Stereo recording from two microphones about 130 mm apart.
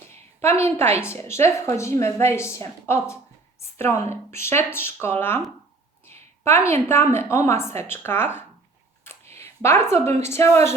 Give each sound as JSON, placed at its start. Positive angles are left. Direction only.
{"t": 0.4, "sound": "a woman's voice", "side_deg": 20}
{"t": 6.1, "sound": "a sound", "side_deg": 20}
{"t": 6.7, "sound": "a woman's voice", "side_deg": 20}